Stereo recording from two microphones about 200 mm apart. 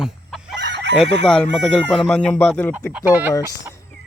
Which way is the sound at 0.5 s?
60° right (ahead or behind).